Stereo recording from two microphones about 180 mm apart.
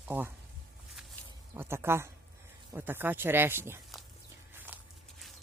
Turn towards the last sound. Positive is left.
turn(degrees=-10)  # may be behind; listen again after turning